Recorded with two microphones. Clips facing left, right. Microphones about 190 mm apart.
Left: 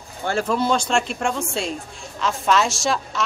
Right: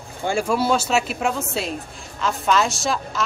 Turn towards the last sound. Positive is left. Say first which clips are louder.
# left 1 dB
turn(degrees=0)  # may be behind; listen again after turning